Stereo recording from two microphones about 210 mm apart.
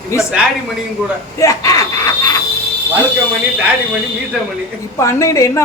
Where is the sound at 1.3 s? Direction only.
15° left (ahead or behind).